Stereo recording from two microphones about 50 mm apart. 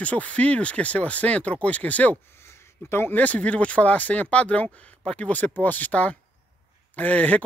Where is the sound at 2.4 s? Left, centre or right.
Left.